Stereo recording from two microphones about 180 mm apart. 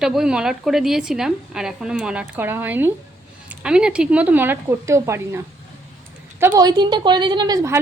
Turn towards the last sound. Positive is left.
turn(degrees=-20)  # may be behind; listen again after turning